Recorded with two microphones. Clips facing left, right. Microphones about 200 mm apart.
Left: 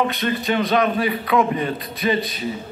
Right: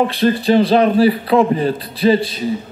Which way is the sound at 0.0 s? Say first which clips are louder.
Right 7 dB; 30° right (ahead or behind).